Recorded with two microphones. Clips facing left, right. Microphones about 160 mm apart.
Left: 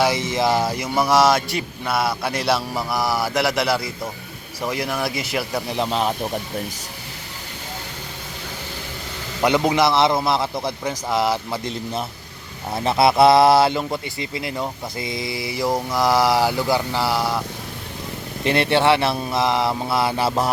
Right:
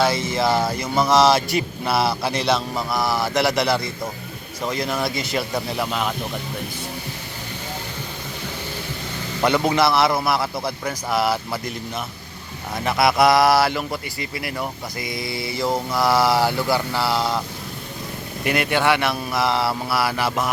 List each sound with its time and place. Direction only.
0.0 s a man's voice: 15° left (ahead or behind); by 2.3 s 5° right (ahead or behind)
2.4 s speech: 5° left (ahead or behind)
5.7 s a man's voice: 25° left (ahead or behind)
6.0 s speech: 35° left (ahead or behind)
9.4 s a man's voice: 15° left (ahead or behind)
12.7 s speech: 30° left (ahead or behind); by 17.4 s 10° left (ahead or behind)
18.4 s a man's voice: 30° left (ahead or behind)